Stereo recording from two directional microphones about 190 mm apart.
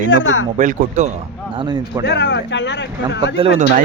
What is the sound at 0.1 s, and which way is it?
Speech, 90° left.